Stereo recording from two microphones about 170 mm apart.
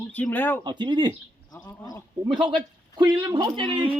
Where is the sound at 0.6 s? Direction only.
25° right (ahead or behind).